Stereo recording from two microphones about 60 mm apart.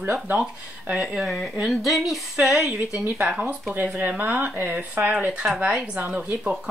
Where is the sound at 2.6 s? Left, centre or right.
Right.